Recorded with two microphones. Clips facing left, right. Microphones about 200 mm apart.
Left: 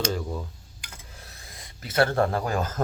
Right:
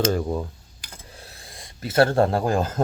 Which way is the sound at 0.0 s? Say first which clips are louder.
Right 6 dB; 50° right (ahead or behind).